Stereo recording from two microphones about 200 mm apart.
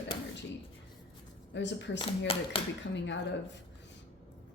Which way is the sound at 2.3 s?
25° left (ahead or behind).